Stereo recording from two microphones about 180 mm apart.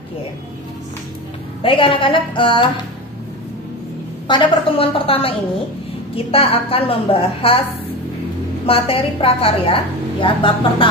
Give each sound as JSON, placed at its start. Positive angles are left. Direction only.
{"t": 1.6, "sound": "a woman's voice", "side_deg": 30}
{"t": 4.3, "sound": "a woman's voice", "side_deg": 30}
{"t": 8.6, "sound": "a woman's voice", "side_deg": 30}